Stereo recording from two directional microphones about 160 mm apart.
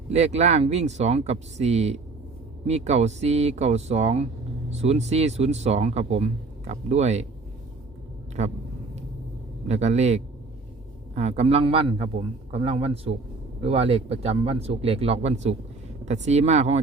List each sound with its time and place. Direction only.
0.1 s speech: 45° right (ahead or behind)
8.4 s speech: 45° right (ahead or behind)
9.6 s a man's voice: 45° right (ahead or behind)